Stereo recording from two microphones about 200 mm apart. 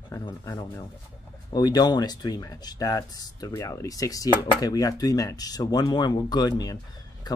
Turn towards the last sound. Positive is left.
turn(degrees=20)  # may be behind; listen again after turning